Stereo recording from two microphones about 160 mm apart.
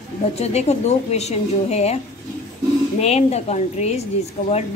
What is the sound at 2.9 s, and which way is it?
A woman's voice, 40° left (ahead or behind).